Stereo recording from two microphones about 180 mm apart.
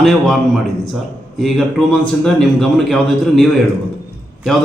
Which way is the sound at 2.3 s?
Centre (ahead or behind).